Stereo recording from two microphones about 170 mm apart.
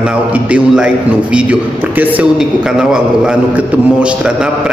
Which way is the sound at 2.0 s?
5° right (ahead or behind).